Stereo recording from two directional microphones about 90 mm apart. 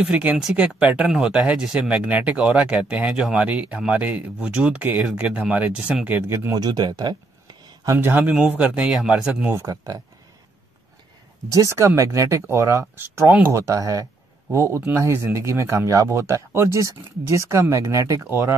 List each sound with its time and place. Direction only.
0.0 s speech: 15° right (ahead or behind)
6.5 s a sound: 50° right (ahead or behind)
7.9 s speech: 25° right (ahead or behind)
9.5 s speech: 35° right (ahead or behind)
11.5 s speech: 35° right (ahead or behind)
12.9 s speech: 20° right (ahead or behind)
18.2 s speech: 25° right (ahead or behind)